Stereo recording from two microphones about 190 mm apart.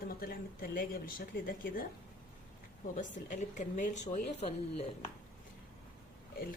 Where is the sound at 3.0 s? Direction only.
40° left (ahead or behind).